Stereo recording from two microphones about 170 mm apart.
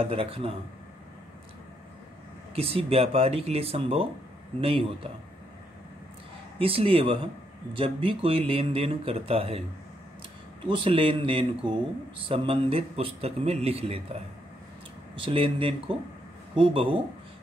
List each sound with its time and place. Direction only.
0.0 s a man's voice: 35° right (ahead or behind)
2.5 s a man's voice: 35° right (ahead or behind)
6.6 s a man's voice: 35° right (ahead or behind)
10.7 s a man's voice: 30° right (ahead or behind)